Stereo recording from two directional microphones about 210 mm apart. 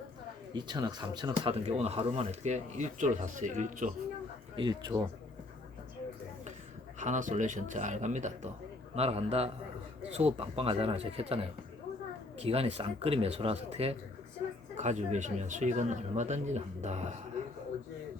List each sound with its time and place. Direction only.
0.5 s speech: 20° right (ahead or behind); by 3.9 s 35° right (ahead or behind)
4.5 s speech: 20° right (ahead or behind)
7.0 s speech: 35° right (ahead or behind)